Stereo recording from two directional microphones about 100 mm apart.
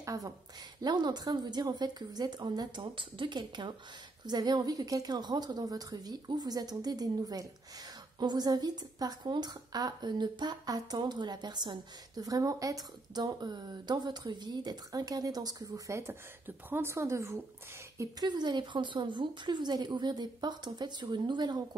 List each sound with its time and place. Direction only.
0.0 s a sound: 35° right (ahead or behind)
0.8 s a woman's voice: 45° right (ahead or behind); by 17.4 s 30° right (ahead or behind)
18.2 s speech: 45° right (ahead or behind)